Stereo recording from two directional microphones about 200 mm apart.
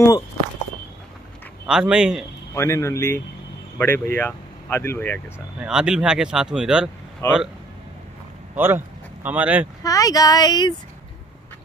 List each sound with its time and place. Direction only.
1.7 s speech: 5° right (ahead or behind)
2.5 s speech: 15° left (ahead or behind)
5.6 s speech: 5° right (ahead or behind)
7.2 s speech: 15° left (ahead or behind)
8.5 s speech: 10° right (ahead or behind)
9.8 s speech: 15° left (ahead or behind)